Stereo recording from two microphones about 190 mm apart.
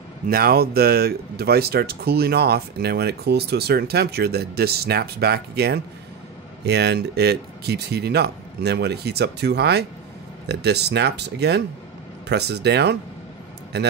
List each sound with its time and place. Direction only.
0.3 s speech: 50° right (ahead or behind)